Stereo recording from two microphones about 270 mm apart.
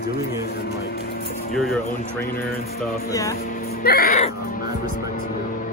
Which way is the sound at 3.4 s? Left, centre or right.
Left.